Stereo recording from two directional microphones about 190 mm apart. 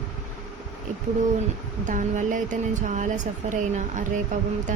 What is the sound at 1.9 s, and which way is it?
A woman's voice, 40° right (ahead or behind).